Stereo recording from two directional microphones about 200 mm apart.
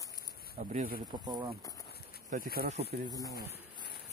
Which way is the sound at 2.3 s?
45° right (ahead or behind).